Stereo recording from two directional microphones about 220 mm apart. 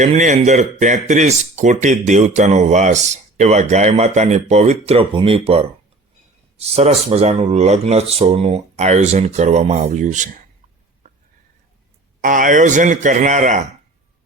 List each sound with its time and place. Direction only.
0.0 s speech: 35° right (ahead or behind)
12.2 s speech: 35° right (ahead or behind)